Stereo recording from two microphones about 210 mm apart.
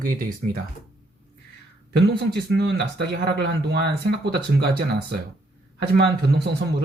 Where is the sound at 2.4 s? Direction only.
50° right (ahead or behind).